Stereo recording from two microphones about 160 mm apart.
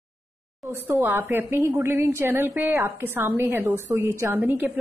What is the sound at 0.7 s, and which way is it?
A woman's voice, 15° right (ahead or behind).